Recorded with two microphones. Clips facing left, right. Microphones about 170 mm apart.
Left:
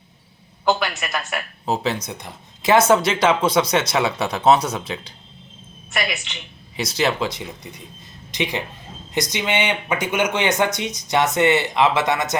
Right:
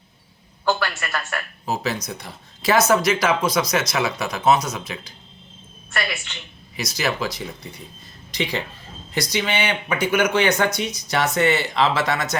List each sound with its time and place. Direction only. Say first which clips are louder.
0.6 s speech: left 2 dB; 15° left (ahead or behind)
1.6 s speech: left 3 dB; 30° left (ahead or behind)
5.9 s speech: left 2 dB; 15° left (ahead or behind)
6.7 s speech: left 3 dB; 30° left (ahead or behind)